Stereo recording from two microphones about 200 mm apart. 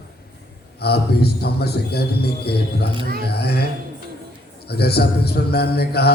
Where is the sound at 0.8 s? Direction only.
55° left (ahead or behind).